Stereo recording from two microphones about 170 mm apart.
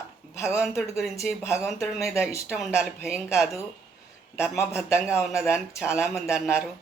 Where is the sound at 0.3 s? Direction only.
15° left (ahead or behind).